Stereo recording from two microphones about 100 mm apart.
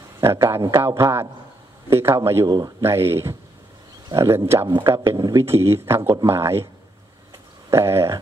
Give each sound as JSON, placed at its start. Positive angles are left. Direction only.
{"t": 0.2, "sound": "a man's voice", "side_deg": -35}
{"t": 7.7, "sound": "speech", "side_deg": -25}